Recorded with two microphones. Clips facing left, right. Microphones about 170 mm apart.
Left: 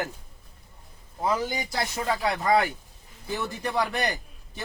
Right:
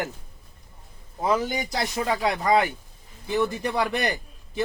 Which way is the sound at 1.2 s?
20° right (ahead or behind).